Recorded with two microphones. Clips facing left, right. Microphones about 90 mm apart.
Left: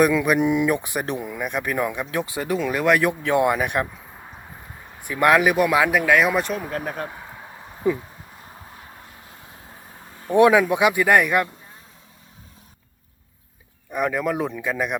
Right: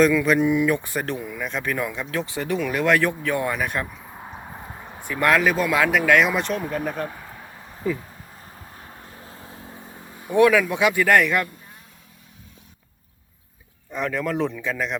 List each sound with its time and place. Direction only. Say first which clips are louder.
0.0 s speech: even; 15° left (ahead or behind)
5.0 s speech: left 2 dB; 10° left (ahead or behind)
7.9 s speech: left 4 dB; 20° left (ahead or behind)
9.2 s vehicle: right 3 dB; 35° right (ahead or behind)
10.3 s speech: left 2 dB; 20° left (ahead or behind)
13.9 s speech: left 2 dB; 15° left (ahead or behind)